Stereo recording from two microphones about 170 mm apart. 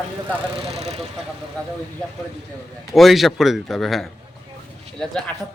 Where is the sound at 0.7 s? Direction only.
40° right (ahead or behind).